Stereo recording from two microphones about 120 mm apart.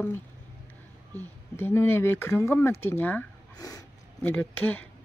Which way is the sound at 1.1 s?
20° left (ahead or behind).